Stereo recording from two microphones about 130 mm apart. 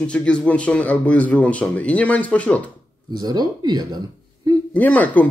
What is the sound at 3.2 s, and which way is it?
Speech, 30° right (ahead or behind).